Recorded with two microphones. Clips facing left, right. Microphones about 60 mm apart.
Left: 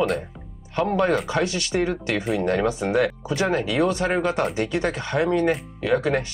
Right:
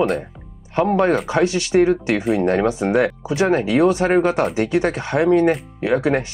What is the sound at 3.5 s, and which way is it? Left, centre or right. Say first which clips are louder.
Speech: right 5 dB; right.